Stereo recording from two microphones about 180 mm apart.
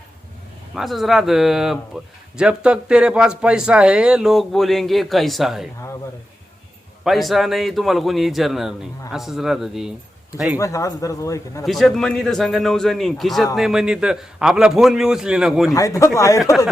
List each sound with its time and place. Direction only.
0.7 s speech: centre (ahead or behind)
7.0 s speech: centre (ahead or behind)
10.6 s a man's voice: 20° left (ahead or behind)
11.6 s speech: centre (ahead or behind)
15.7 s a man's voice: 20° left (ahead or behind)